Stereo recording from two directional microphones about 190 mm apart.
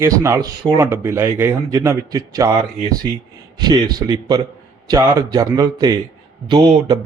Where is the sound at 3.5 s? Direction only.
20° right (ahead or behind).